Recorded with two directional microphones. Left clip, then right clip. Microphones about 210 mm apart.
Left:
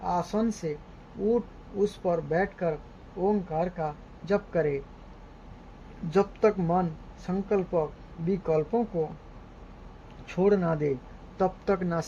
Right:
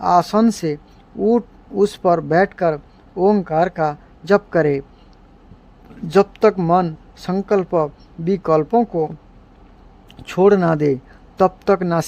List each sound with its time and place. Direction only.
0.0 s speech: 40° right (ahead or behind)
1.8 s speech: 40° right (ahead or behind)
6.1 s speech: 35° right (ahead or behind)
10.2 s speech: 40° right (ahead or behind)